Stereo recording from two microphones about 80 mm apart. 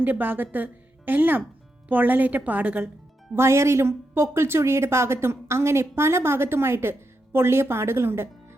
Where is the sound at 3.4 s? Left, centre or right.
Right.